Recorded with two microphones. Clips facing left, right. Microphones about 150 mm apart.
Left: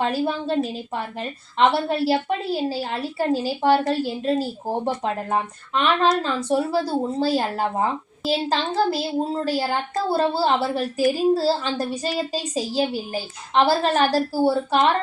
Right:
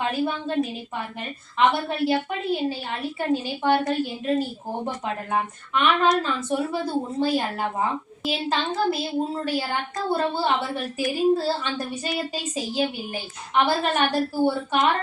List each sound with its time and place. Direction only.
0.0 s a woman's voice: 35° left (ahead or behind)